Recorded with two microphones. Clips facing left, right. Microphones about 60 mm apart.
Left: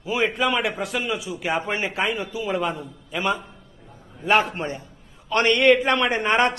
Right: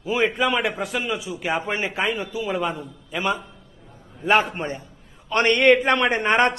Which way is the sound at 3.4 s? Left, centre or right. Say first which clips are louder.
Even; centre.